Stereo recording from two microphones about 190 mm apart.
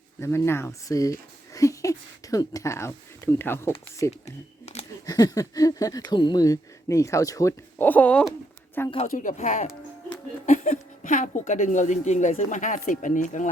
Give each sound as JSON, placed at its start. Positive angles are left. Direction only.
{"t": 0.2, "sound": "speech", "side_deg": 15}
{"t": 4.3, "sound": "camera", "side_deg": 35}
{"t": 5.0, "sound": "speech", "side_deg": 20}
{"t": 9.0, "sound": "speech", "side_deg": 45}